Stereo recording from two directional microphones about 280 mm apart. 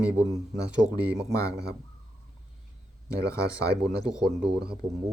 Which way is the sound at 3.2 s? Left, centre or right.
Centre.